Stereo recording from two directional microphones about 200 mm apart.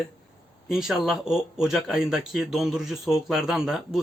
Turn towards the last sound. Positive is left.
turn(degrees=0)  # may be behind; listen again after turning